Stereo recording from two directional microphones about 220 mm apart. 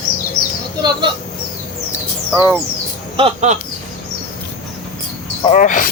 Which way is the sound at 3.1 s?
30° right (ahead or behind).